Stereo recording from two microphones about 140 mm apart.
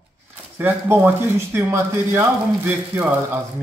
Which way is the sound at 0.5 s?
15° right (ahead or behind).